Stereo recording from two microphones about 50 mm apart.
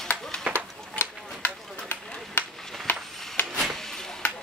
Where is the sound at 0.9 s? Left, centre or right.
Left.